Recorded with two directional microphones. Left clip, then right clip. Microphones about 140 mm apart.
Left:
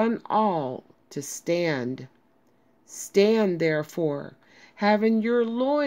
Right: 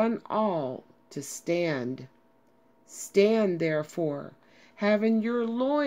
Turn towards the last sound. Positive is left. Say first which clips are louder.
# left 4 dB
turn(degrees=20)  # may be behind; listen again after turning